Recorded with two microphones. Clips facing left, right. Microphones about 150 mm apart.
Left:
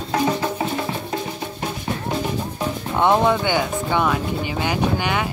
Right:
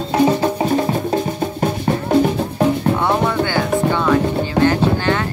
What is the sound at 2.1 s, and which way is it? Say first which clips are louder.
Music: right 12 dB; 55° right (ahead or behind).